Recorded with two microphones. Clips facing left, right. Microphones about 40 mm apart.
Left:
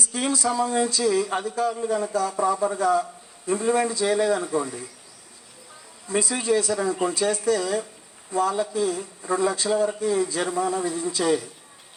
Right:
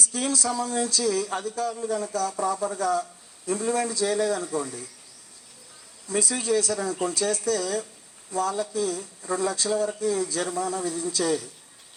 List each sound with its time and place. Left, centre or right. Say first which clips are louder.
0.0 s speech: left 2 dB; left
6.1 s speech: left 2 dB; left